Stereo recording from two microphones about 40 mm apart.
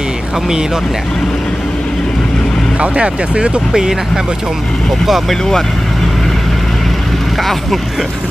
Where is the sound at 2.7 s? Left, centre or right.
Right.